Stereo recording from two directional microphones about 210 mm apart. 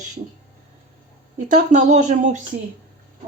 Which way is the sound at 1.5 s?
35° right (ahead or behind).